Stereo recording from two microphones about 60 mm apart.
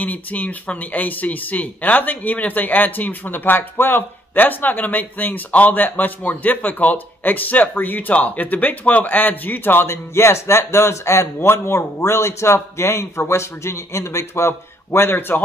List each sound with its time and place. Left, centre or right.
0.0 s speech: left